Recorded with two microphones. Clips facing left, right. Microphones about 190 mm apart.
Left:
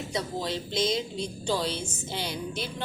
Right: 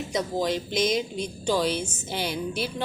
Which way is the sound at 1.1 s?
25° left (ahead or behind).